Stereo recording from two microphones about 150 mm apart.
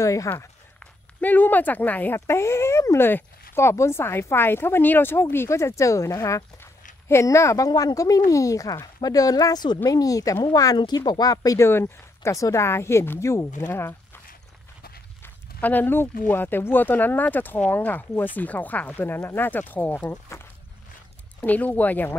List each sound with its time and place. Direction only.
0.0 s speech: 20° left (ahead or behind)
15.2 s a sound: 15° left (ahead or behind)
16.3 s speech: 15° left (ahead or behind)